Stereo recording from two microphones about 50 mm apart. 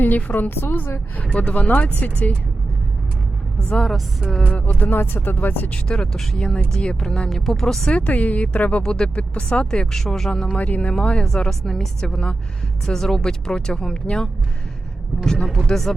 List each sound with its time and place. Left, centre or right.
0.3 s speech: left
1.2 s speech: left
3.7 s speech: centre
4.5 s speech: left
5.7 s speech: centre
7.9 s speech: left
8.8 s speech: centre
9.6 s speech: centre
15.6 s speech: centre